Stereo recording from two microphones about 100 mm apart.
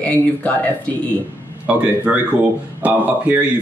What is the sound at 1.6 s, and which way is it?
Speech, 15° right (ahead or behind).